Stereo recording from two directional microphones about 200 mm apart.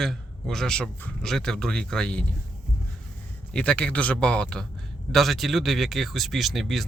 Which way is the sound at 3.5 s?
5° left (ahead or behind).